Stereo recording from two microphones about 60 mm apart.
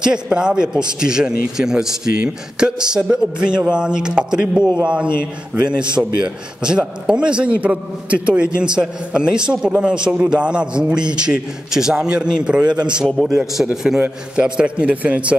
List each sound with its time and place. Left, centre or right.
0.0 s a man's voice: centre
13.0 s a man's voice: centre
14.3 s a man's voice: centre